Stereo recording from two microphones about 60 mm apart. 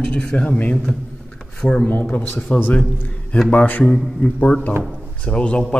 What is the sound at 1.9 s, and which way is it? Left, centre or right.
Speech, left.